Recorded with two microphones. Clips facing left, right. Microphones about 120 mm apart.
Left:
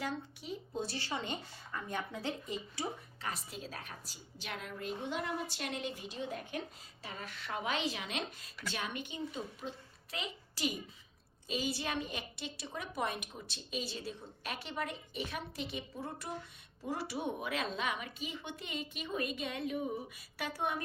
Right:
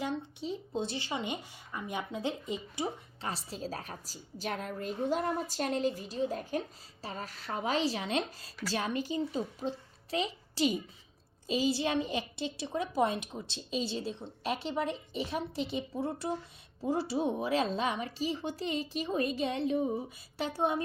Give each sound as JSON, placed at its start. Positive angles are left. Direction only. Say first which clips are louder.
{"t": 0.0, "sound": "speech", "louder": "right 5 dB", "side_deg": -25}
{"t": 3.2, "sound": "a woman's voice", "louder": "right 4 dB", "side_deg": -30}